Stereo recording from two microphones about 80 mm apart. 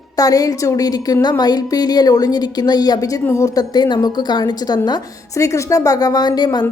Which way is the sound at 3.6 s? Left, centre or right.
Left.